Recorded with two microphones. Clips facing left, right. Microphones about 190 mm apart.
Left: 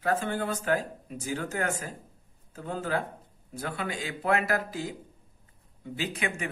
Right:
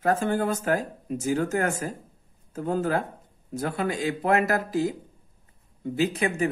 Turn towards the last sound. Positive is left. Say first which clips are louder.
# right 8 dB
turn(degrees=-35)  # may be behind; listen again after turning